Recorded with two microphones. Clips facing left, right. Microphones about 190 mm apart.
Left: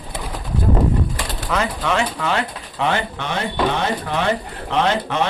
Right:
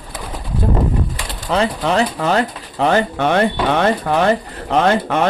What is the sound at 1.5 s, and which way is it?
Speech, 35° right (ahead or behind).